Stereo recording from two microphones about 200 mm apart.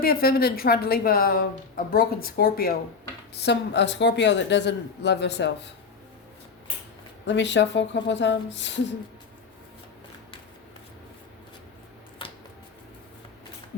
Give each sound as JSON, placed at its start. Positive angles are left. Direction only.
{"t": 0.0, "sound": "a woman's voice", "side_deg": 50}
{"t": 3.4, "sound": "a woman's voice", "side_deg": 60}
{"t": 7.3, "sound": "a woman's voice", "side_deg": 65}
{"t": 12.2, "sound": "a sound", "side_deg": 25}